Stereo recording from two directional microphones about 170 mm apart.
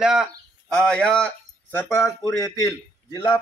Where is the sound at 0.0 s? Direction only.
5° right (ahead or behind).